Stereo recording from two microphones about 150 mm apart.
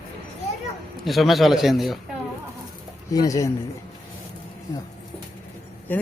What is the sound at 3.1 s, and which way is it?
Speech, 20° left (ahead or behind).